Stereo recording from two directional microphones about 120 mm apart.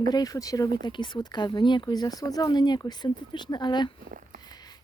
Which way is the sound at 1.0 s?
40° left (ahead or behind).